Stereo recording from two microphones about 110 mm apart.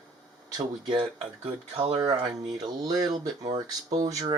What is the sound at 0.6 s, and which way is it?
Speech, 50° right (ahead or behind).